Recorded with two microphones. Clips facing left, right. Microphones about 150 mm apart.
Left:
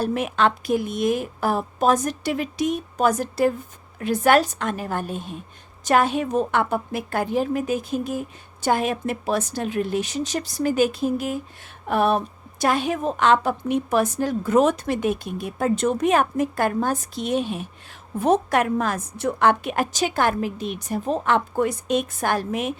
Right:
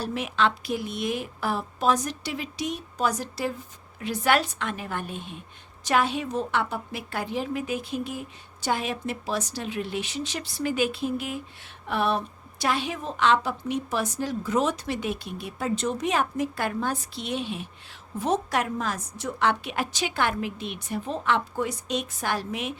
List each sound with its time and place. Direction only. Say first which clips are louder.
0.0 s a woman's voice: left 5 dB; 50° left (ahead or behind)